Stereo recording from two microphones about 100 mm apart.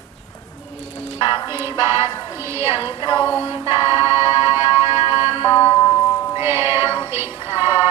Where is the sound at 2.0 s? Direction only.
25° right (ahead or behind).